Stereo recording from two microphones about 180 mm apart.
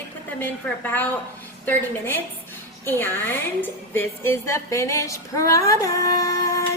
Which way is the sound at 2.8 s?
10° left (ahead or behind).